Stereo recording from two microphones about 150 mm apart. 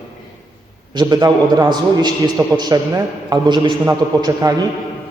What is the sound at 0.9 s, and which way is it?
A man's voice, 25° right (ahead or behind).